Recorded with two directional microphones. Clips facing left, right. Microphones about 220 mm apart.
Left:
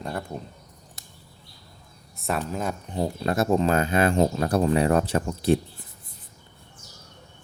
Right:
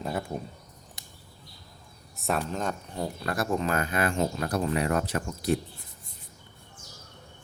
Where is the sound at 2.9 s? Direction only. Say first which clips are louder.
Left 9 dB; 25° left (ahead or behind).